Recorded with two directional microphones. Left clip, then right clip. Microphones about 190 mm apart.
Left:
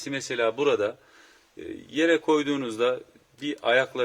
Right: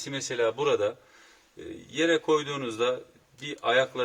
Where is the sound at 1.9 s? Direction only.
35° left (ahead or behind).